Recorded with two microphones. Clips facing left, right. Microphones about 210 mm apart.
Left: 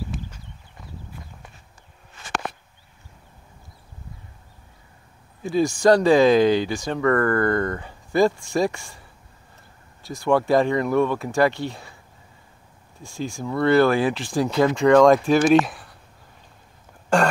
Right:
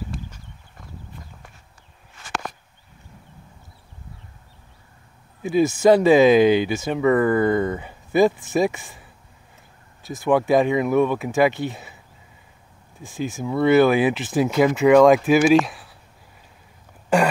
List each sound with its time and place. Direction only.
5.4 s speech: 20° right (ahead or behind)
7.8 s a sound: 20° right (ahead or behind)
8.3 s speech: 5° right (ahead or behind)
10.2 s speech: 15° right (ahead or behind)
13.0 s speech: 20° right (ahead or behind)
13.3 s speech: 5° right (ahead or behind)
13.7 s speech: 20° right (ahead or behind)
14.5 s speech: 5° right (ahead or behind)